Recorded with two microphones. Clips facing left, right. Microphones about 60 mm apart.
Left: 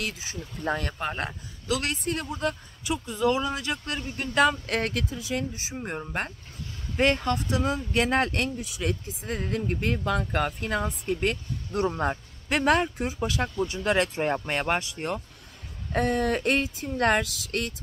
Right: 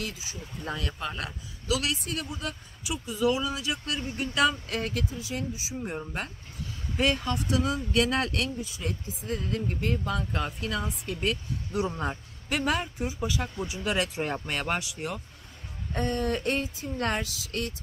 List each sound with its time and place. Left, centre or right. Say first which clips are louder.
0.0 s speech: left 3 dB; left
0.7 s a man's voice: left 5 dB; left
4.6 s speech: left 3 dB; left
5.8 s speech: left 1 dB; left
7.3 s speech: left 1 dB; left
8.5 s a man's voice: left 4 dB; left
12.4 s speech: left 5 dB; left
15.9 s speech: left 4 dB; left